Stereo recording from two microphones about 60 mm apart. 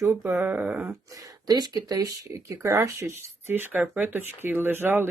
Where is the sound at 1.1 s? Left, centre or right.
Right.